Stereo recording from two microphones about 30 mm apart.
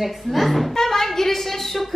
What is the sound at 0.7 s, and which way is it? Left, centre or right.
A woman's voice, centre.